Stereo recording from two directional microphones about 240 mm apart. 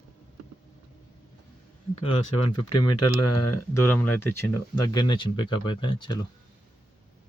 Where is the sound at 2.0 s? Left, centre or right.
Left.